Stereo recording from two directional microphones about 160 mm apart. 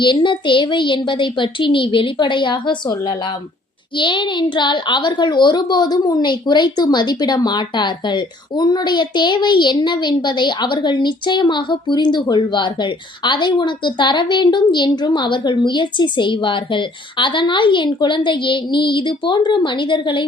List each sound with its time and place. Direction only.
0.0 s a woman's voice: 30° left (ahead or behind)